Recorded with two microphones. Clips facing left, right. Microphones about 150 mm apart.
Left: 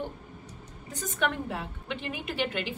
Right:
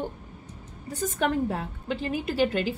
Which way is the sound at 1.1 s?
40° right (ahead or behind).